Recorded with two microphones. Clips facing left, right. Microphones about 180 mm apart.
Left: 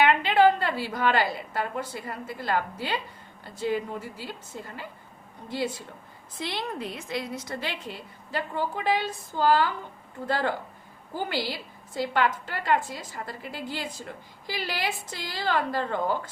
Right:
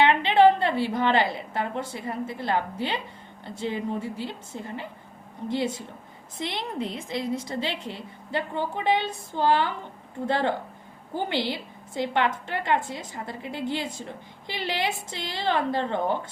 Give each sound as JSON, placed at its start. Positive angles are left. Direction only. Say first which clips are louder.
{"t": 0.0, "sound": "a woman's voice", "louder": "right 2 dB", "side_deg": -25}